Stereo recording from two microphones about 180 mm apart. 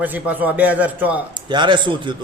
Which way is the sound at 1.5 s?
25° right (ahead or behind).